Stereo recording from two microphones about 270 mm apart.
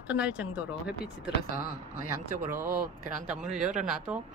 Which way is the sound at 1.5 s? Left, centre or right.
Left.